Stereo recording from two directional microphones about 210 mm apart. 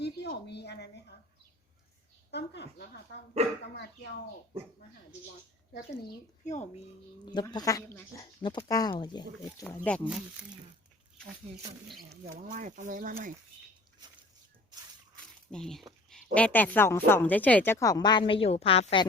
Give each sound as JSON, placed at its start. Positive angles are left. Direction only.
{"t": 0.0, "sound": "a sound", "side_deg": 55}
{"t": 2.3, "sound": "speech", "side_deg": 55}
{"t": 6.4, "sound": "a woman's voice", "side_deg": 35}
{"t": 7.3, "sound": "a woman's voice", "side_deg": 20}
{"t": 9.6, "sound": "speech", "side_deg": 5}
{"t": 12.0, "sound": "speech", "side_deg": -35}
{"t": 15.5, "sound": "a woman's voice", "side_deg": 0}